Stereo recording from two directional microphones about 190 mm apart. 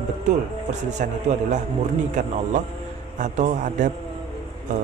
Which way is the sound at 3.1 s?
40° right (ahead or behind).